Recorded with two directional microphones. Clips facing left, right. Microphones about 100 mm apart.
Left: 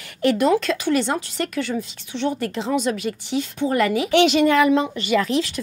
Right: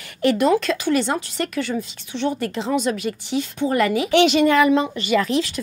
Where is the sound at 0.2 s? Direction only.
15° right (ahead or behind).